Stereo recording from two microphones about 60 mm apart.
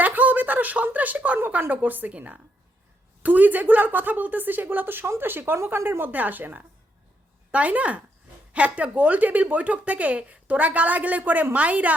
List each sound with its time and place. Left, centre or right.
0.0 s a sound: right
1.4 s a woman's voice: right
6.1 s a woman's voice: right